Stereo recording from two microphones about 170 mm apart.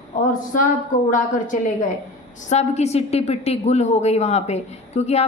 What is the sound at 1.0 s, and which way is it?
A woman's voice, 50° left (ahead or behind).